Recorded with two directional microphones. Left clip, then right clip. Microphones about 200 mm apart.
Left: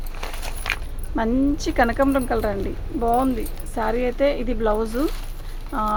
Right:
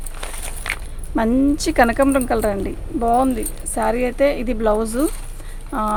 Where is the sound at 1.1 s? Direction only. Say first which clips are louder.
Right 4 dB; 50° right (ahead or behind).